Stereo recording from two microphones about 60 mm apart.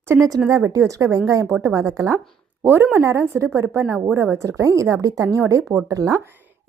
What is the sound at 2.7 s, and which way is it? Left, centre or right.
A woman's voice, right.